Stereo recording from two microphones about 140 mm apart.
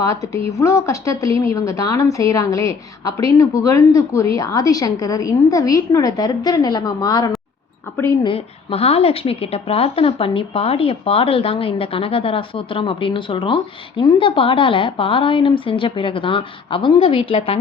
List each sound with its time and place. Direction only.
0.0 s a woman's voice: 20° left (ahead or behind)
8.2 s a woman's voice: 40° left (ahead or behind)